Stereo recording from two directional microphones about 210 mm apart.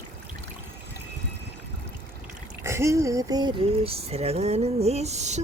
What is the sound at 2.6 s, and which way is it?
Speech, 15° right (ahead or behind).